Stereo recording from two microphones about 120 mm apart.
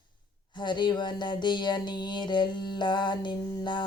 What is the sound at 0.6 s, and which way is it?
Mantra, 40° left (ahead or behind).